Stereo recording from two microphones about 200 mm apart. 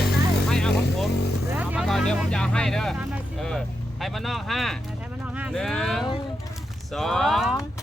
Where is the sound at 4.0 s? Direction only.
Centre (ahead or behind).